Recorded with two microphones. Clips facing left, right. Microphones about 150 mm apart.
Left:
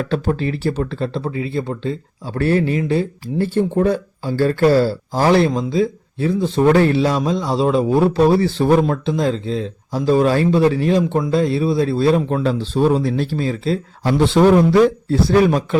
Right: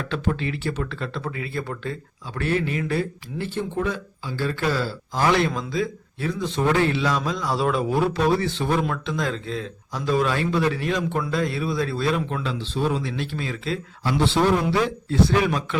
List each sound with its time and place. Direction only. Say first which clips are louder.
0.0 s speech: left 6 dB; 40° left (ahead or behind); by 2.0 s 25° left (ahead or behind)
2.2 s speech: left 7 dB; 35° left (ahead or behind)
3.3 s speech: left 9 dB; 45° left (ahead or behind)
6.7 s speech: left 7 dB; 40° left (ahead or behind)